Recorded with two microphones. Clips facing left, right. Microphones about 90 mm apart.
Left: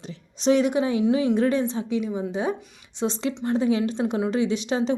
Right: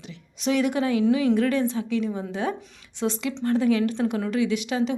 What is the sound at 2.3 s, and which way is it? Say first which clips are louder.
A woman's voice: left 1 dB; 20° left (ahead or behind).